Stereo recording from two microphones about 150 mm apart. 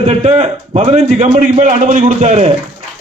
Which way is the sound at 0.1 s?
45° right (ahead or behind).